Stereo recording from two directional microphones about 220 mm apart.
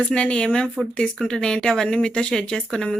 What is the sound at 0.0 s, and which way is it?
Speech, 5° left (ahead or behind).